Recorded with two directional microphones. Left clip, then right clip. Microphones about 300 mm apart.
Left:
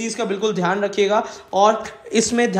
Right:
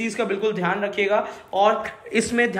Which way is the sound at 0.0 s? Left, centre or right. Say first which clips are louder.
Left 1 dB; centre.